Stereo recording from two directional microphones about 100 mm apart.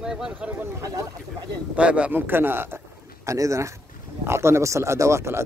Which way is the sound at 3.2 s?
30° right (ahead or behind).